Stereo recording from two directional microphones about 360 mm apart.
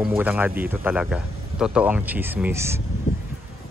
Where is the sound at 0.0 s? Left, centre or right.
Centre.